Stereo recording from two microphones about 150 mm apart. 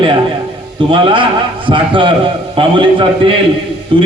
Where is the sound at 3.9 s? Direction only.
35° right (ahead or behind).